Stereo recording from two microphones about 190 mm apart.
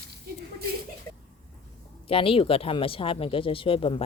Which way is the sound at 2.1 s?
30° left (ahead or behind).